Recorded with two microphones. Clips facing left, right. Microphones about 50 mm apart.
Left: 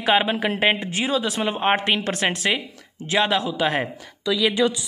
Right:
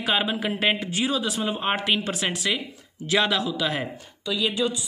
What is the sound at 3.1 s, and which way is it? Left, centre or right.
Speech, left.